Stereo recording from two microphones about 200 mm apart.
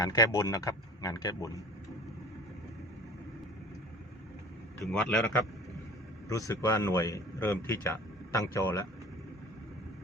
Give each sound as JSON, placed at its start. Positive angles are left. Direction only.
{"t": 0.0, "sound": "a man's voice", "side_deg": 20}
{"t": 4.8, "sound": "a man's voice", "side_deg": 5}